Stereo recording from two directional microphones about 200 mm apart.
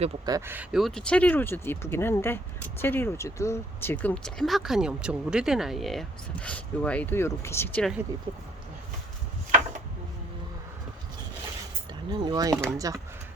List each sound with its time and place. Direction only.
0.3 s speech: 15° right (ahead or behind); by 7.9 s 5° left (ahead or behind)
12.1 s speech: 20° right (ahead or behind)